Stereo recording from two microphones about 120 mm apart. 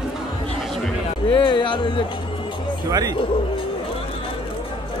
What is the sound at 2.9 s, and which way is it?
Speech, 30° right (ahead or behind).